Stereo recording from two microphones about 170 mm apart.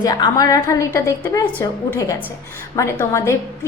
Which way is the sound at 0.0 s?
20° left (ahead or behind).